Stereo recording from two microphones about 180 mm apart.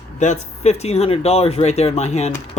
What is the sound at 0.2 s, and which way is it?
Speech, 40° left (ahead or behind).